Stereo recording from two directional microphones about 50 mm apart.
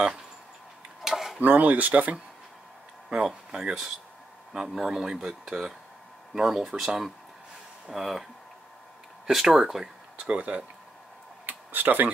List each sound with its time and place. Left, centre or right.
1.0 s tick-tock: centre
1.4 s speech: right
3.1 s speech: centre
9.3 s speech: centre
10.1 s speech: right
11.4 s a sound: right